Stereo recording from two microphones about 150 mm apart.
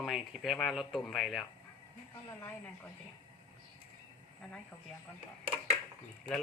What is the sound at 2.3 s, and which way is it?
Speech, 15° left (ahead or behind).